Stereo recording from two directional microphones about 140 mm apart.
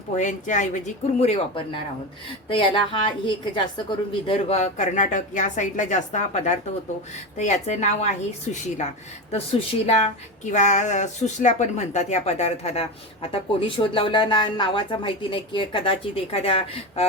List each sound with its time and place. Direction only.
0.1 s a woman's voice: 60° left (ahead or behind)
2.5 s a woman's voice: 35° left (ahead or behind)